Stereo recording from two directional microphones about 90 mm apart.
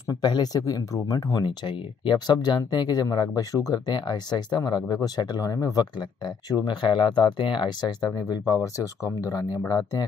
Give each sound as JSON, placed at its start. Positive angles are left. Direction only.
{"t": 0.1, "sound": "speech", "side_deg": 50}
{"t": 8.0, "sound": "speech", "side_deg": 40}